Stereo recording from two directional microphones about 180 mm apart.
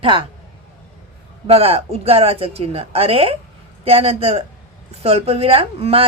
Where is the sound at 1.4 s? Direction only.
35° right (ahead or behind).